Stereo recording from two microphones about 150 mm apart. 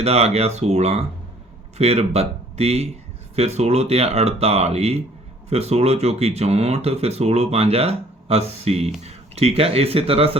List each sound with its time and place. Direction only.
0.0 s speech: 45° right (ahead or behind)